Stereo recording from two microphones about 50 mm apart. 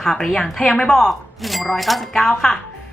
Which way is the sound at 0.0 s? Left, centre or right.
Centre.